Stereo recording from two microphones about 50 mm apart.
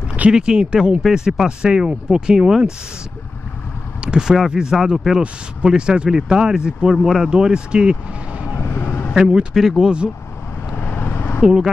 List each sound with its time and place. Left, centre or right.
0.3 s speech: centre
4.0 s speech: centre
8.5 s vehicle: left
9.1 s speech: centre
9.5 s speech: centre
9.8 s speech: centre
10.8 s vehicle: left
11.4 s speech: centre